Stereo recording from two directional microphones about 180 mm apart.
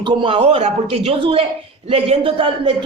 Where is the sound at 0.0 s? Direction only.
25° right (ahead or behind).